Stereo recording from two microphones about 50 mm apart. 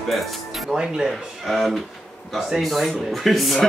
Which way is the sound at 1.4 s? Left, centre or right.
Centre.